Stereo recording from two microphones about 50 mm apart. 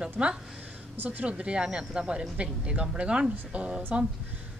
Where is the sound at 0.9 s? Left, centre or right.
Right.